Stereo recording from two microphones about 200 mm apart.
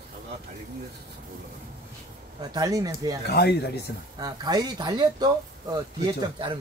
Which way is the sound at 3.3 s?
55° left (ahead or behind).